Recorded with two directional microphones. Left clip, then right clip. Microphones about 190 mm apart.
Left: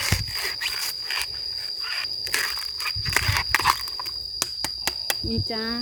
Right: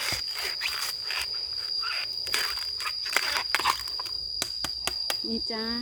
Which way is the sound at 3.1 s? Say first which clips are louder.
Left 4 dB; 5° left (ahead or behind).